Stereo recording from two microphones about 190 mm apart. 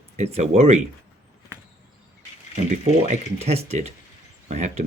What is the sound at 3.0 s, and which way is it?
Speech, 35° right (ahead or behind).